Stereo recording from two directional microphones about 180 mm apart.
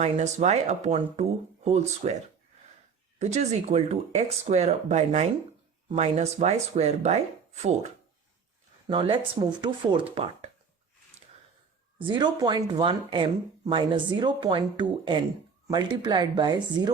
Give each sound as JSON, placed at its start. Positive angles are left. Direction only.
{"t": 0.0, "sound": "speech", "side_deg": -40}
{"t": 3.2, "sound": "speech", "side_deg": -40}
{"t": 8.9, "sound": "speech", "side_deg": -30}
{"t": 12.0, "sound": "speech", "side_deg": -25}